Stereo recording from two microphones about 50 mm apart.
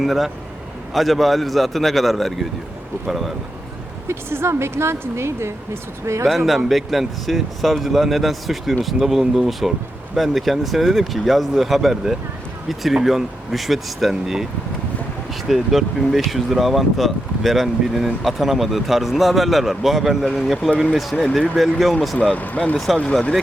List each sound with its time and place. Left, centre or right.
0.0 s speech: centre
4.1 s a woman's voice: right
6.2 s speech: centre
15.4 s speech: centre
22.4 s speech: left